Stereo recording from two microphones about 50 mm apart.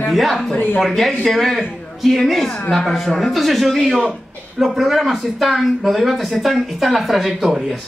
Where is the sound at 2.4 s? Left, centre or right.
Left.